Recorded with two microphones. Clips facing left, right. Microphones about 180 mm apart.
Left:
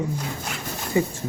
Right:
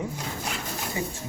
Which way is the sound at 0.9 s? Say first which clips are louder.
Left 11 dB; 60° left (ahead or behind).